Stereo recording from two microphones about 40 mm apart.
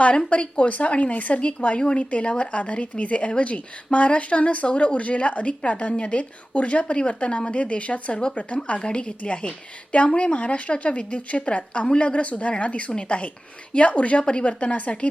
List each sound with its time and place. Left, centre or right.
0.3 s a woman's voice: left